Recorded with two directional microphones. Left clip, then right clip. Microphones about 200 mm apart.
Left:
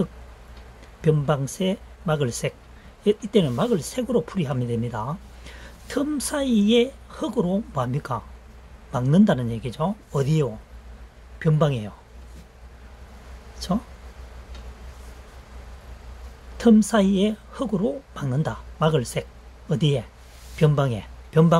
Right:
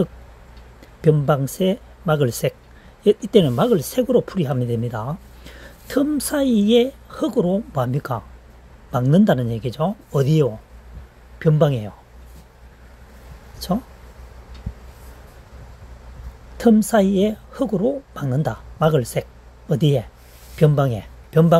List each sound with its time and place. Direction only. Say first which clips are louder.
1.0 s speech: right 5 dB; 20° right (ahead or behind)
13.6 s speech: right 3 dB; 20° right (ahead or behind)
16.5 s a woman's voice: right 3 dB; 20° right (ahead or behind)